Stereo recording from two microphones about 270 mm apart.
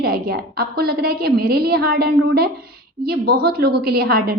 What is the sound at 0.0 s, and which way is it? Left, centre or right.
A woman's voice, right.